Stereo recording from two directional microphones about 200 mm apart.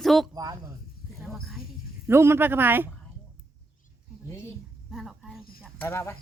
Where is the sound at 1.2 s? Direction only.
Centre (ahead or behind).